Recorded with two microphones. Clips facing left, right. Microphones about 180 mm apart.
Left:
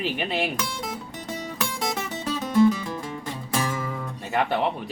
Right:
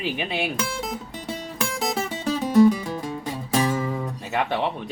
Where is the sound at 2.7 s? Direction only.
25° right (ahead or behind).